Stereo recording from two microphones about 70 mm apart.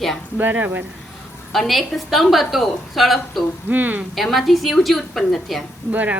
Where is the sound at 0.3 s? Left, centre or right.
Right.